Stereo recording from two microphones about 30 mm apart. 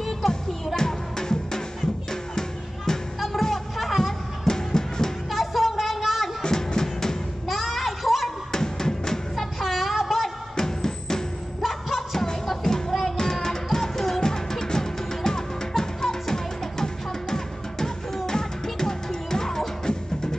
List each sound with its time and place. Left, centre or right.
0.7 s music: centre
3.4 s music: centre
4.5 s music: centre
5.3 s a sound: centre
6.4 s music: left
7.4 s a sound: centre
8.5 s drum: centre
9.3 s music: centre
10.5 s music: centre
11.6 s music: centre